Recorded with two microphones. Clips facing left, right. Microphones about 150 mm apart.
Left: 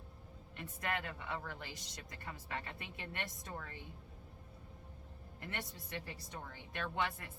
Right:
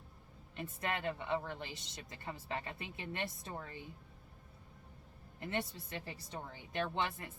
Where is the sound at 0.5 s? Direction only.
25° right (ahead or behind).